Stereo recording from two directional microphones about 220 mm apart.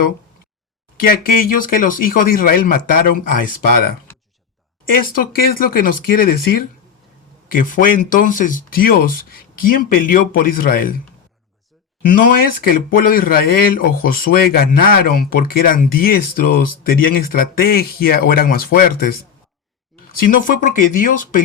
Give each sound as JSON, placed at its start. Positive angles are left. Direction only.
{"t": 0.9, "sound": "speech", "side_deg": 40}
{"t": 4.9, "sound": "speech", "side_deg": 40}
{"t": 12.6, "sound": "speech", "side_deg": 40}